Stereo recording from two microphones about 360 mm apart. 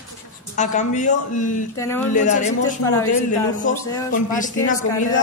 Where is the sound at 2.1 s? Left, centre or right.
Left.